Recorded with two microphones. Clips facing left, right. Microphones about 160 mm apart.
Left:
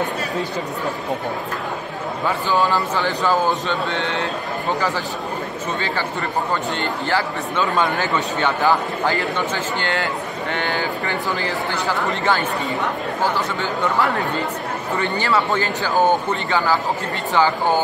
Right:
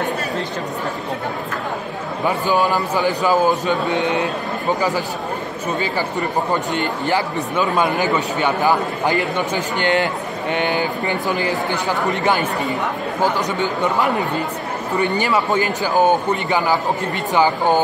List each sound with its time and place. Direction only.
2.2 s speech: 15° right (ahead or behind)
6.5 s speech: 15° right (ahead or behind)